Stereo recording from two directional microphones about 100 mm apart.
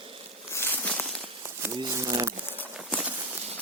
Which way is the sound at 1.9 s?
35° right (ahead or behind).